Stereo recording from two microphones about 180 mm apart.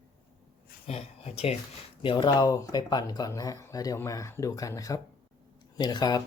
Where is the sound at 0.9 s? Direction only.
35° left (ahead or behind).